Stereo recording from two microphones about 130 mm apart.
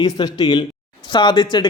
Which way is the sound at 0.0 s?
30° left (ahead or behind).